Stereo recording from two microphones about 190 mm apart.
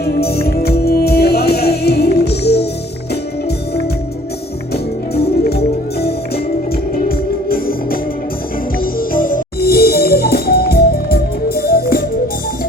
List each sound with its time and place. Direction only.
0.0 s music: 55° left (ahead or behind)
4.7 s music: 55° left (ahead or behind)